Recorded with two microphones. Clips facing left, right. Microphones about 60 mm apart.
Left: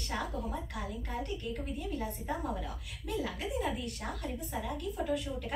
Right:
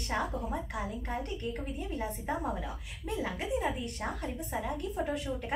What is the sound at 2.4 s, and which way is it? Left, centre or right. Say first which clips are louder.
Speech: right 2 dB; centre.